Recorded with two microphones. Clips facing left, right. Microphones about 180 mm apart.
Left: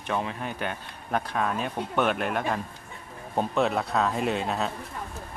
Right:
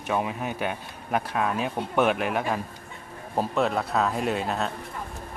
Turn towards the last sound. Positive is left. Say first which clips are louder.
# even
turn(degrees=0)  # may be behind; listen again after turning